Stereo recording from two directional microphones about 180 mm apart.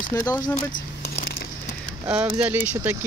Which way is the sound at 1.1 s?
60° left (ahead or behind).